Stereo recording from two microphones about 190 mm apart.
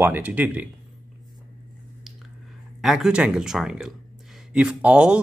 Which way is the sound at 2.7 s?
Centre (ahead or behind).